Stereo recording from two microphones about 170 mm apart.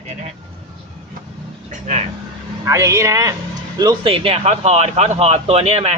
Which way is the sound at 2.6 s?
15° right (ahead or behind).